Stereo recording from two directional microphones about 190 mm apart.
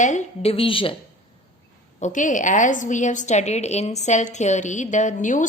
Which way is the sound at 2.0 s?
40° left (ahead or behind).